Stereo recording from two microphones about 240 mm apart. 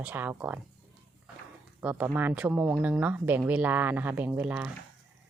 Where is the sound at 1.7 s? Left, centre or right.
Centre.